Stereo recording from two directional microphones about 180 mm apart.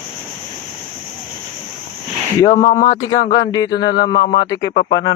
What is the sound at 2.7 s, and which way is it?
A man's voice, 20° left (ahead or behind).